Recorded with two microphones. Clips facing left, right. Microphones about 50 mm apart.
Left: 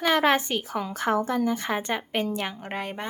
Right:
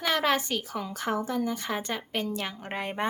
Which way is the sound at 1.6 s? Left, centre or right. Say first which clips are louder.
Left 4 dB; left.